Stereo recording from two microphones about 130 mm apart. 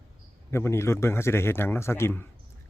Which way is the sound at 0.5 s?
20° left (ahead or behind).